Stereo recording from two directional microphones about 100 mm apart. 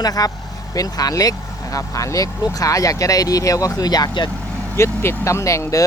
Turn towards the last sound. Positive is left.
turn(degrees=30)  # may be behind; listen again after turning